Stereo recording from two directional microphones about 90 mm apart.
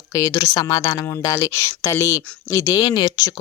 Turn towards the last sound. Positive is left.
turn(degrees=55)  # may be behind; listen again after turning